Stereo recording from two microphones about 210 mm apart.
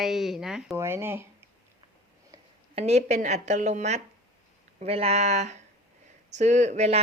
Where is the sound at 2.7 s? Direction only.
30° right (ahead or behind).